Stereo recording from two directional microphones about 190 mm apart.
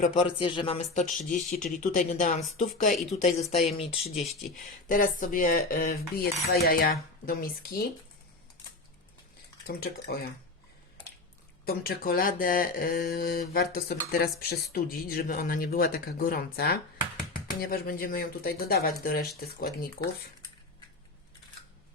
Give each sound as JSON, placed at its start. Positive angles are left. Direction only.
{"t": 0.0, "sound": "speech", "side_deg": 30}
{"t": 4.9, "sound": "speech", "side_deg": 45}
{"t": 9.6, "sound": "speech", "side_deg": 55}
{"t": 11.6, "sound": "speech", "side_deg": 55}